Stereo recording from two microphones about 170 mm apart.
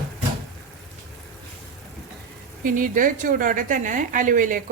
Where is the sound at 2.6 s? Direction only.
50° right (ahead or behind).